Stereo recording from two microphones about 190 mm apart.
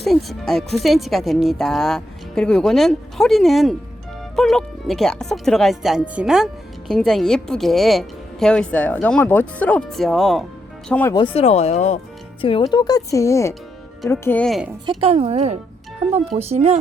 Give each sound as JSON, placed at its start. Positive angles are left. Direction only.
{"t": 0.0, "sound": "speech", "side_deg": 0}
{"t": 11.3, "sound": "speech", "side_deg": 35}
{"t": 14.8, "sound": "speech", "side_deg": -30}